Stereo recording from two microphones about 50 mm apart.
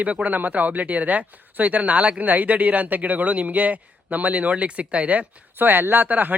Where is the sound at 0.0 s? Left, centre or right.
Right.